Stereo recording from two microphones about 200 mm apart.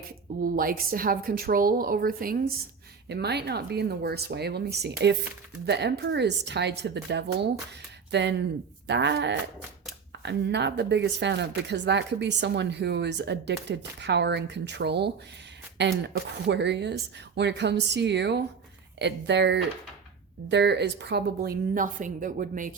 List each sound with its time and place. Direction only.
0.4 s a woman's voice: 45° right (ahead or behind)